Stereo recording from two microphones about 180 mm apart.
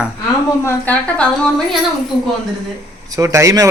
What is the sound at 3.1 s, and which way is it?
Speech, 15° right (ahead or behind).